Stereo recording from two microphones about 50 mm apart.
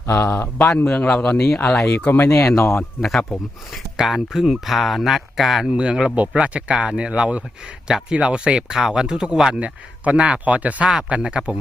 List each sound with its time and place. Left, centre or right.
0.1 s speech: left
0.9 s speech: left
1.7 s speech: centre
2.2 s speech: left
3.0 s speech: centre
3.9 s speech: centre
5.6 s speech: centre
9.6 s speech: right
11.1 s speech: centre